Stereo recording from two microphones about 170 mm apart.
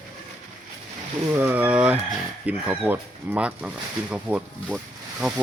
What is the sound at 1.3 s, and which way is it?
Speech, 10° right (ahead or behind).